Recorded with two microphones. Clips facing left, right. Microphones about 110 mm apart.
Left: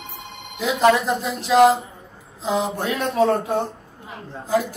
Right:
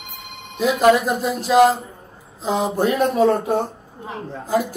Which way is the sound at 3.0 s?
25° right (ahead or behind).